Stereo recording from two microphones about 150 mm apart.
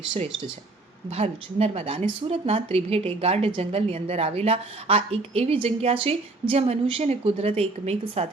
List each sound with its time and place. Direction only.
1.1 s a woman's voice: 40° right (ahead or behind)